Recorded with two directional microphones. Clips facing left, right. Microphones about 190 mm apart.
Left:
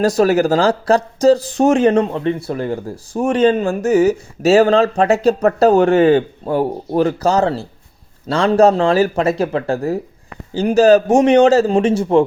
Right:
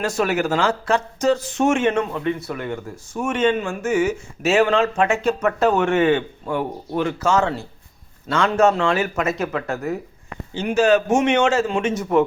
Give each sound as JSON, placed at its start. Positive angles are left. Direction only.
{"t": 0.0, "sound": "speech", "side_deg": 35}